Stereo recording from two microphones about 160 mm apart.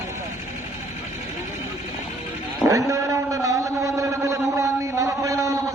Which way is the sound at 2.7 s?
20° right (ahead or behind).